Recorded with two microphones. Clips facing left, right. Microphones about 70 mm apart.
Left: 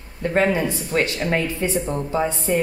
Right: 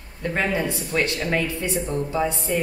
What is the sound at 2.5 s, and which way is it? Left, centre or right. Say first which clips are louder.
Speech: left 6 dB; left.